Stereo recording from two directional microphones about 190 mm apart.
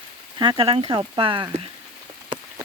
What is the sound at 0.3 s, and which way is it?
Speech, 25° right (ahead or behind).